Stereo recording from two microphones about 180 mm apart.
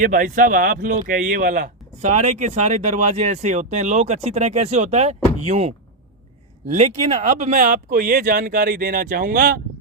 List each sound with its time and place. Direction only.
0.0 s speech: 50° right (ahead or behind)